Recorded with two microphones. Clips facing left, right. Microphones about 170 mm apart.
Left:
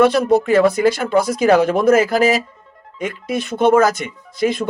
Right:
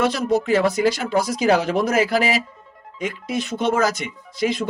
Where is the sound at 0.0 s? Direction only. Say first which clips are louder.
Left 6 dB; 60° left (ahead or behind).